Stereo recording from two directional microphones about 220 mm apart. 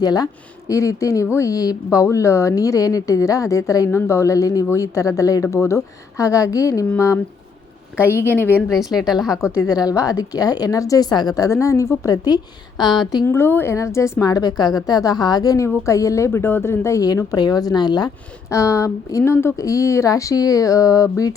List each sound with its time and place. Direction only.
0.0 s a woman's voice: 15° left (ahead or behind)
8.3 s a woman's voice: 10° left (ahead or behind)
8.7 s a woman's voice: centre (ahead or behind)
9.4 s a woman's voice: 15° left (ahead or behind)